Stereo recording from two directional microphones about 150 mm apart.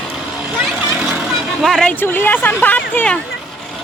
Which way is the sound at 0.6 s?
5° right (ahead or behind).